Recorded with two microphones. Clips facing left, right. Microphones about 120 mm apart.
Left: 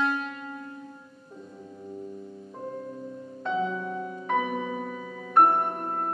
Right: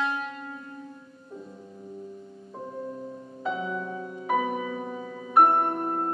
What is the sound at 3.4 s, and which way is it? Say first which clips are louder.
Music: left 2 dB; 5° right (ahead or behind).